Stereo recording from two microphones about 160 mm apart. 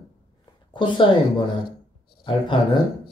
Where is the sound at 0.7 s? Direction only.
30° left (ahead or behind).